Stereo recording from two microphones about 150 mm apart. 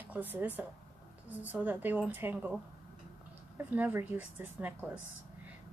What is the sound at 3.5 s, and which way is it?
A woman's voice, 15° right (ahead or behind).